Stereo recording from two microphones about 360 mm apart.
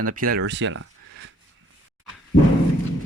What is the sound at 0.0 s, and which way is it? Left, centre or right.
Speech, right.